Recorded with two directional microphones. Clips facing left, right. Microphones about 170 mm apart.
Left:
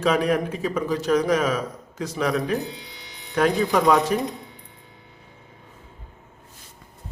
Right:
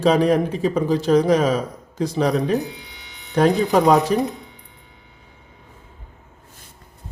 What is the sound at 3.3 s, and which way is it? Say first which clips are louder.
Speech: right 4 dB; 30° right (ahead or behind).